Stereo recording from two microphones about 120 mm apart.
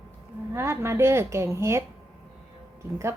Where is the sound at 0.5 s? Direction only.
20° right (ahead or behind).